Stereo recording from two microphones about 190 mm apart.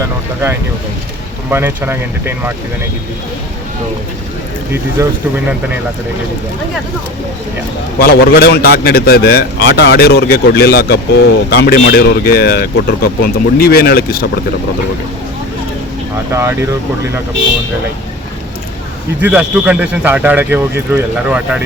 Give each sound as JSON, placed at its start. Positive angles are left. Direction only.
{"t": 1.5, "sound": "speech", "side_deg": -10}
{"t": 5.0, "sound": "speech", "side_deg": -15}
{"t": 7.9, "sound": "a man's voice", "side_deg": 55}
{"t": 16.3, "sound": "speech", "side_deg": -15}
{"t": 19.2, "sound": "speech", "side_deg": -5}